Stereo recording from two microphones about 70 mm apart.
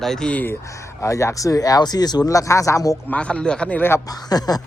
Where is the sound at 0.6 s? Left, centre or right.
Left.